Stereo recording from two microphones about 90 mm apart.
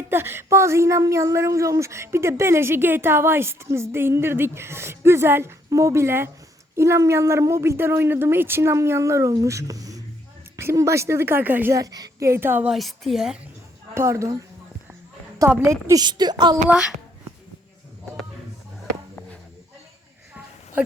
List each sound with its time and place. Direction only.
0.1 s speech: 25° right (ahead or behind)
10.6 s speech: 30° right (ahead or behind)
11.7 s a woman's voice: 45° right (ahead or behind)
12.2 s speech: 30° right (ahead or behind)
12.6 s a woman's voice: centre (ahead or behind)
13.9 s speech: 30° right (ahead or behind)
15.4 s speech: 30° right (ahead or behind)
16.0 s a woman's voice: 50° right (ahead or behind)
16.6 s a child's voice: 10° right (ahead or behind)